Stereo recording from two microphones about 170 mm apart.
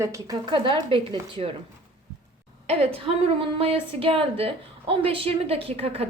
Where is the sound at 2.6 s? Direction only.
35° right (ahead or behind).